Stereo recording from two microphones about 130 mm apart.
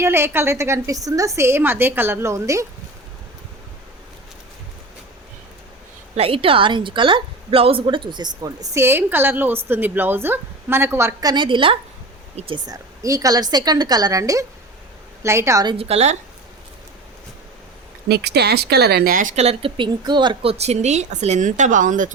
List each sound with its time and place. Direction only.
0.0 s a woman's voice: 20° right (ahead or behind)
6.1 s a woman's voice: 45° right (ahead or behind)
12.6 s a woman's voice: 25° right (ahead or behind)
15.6 s a woman's voice: 50° right (ahead or behind)
19.1 s speech: 80° right